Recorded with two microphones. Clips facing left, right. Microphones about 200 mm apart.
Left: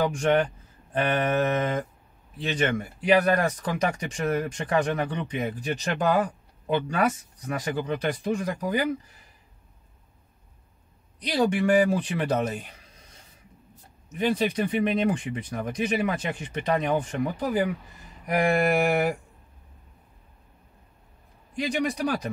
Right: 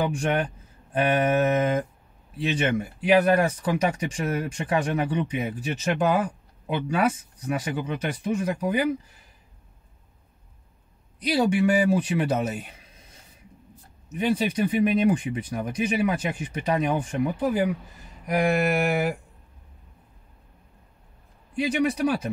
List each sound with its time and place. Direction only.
0.9 s speech: 10° right (ahead or behind)
11.3 s speech: 5° right (ahead or behind)
14.1 s speech: 5° right (ahead or behind)
21.5 s speech: 5° right (ahead or behind)